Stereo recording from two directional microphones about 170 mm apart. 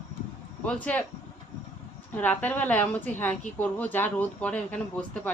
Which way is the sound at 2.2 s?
10° left (ahead or behind).